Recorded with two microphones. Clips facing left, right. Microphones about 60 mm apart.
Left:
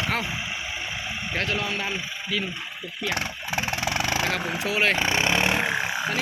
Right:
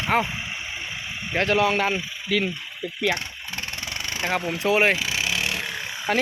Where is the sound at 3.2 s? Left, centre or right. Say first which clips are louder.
Left 5 dB; left.